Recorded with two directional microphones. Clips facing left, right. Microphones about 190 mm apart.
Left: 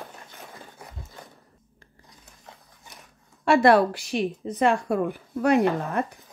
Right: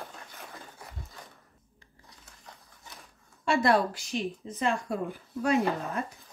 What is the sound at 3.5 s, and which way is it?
Speech, 65° left (ahead or behind).